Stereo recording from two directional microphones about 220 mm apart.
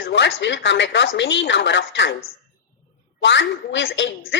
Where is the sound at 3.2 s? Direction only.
55° left (ahead or behind).